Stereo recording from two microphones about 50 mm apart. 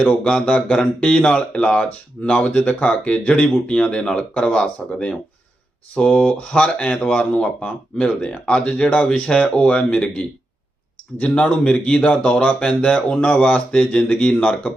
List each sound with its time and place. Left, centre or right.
0.3 s speech: centre
6.4 s speech: left
13.1 s speech: left